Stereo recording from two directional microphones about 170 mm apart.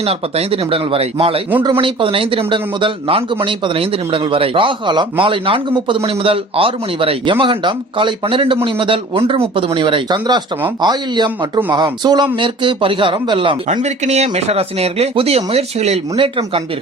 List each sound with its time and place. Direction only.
0.0 s speech: 35° right (ahead or behind)
13.7 s speech: 40° right (ahead or behind)